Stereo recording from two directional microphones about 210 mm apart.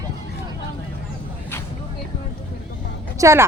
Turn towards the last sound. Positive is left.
turn(degrees=-15)  # may be behind; listen again after turning